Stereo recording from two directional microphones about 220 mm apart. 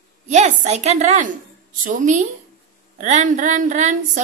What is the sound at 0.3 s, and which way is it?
A woman's voice, 35° right (ahead or behind).